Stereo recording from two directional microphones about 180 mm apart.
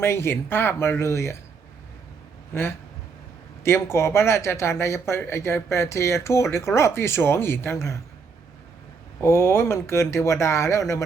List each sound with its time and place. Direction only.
0.0 s speech: 15° left (ahead or behind)
3.6 s speech: 15° left (ahead or behind)
9.2 s speech: 15° left (ahead or behind)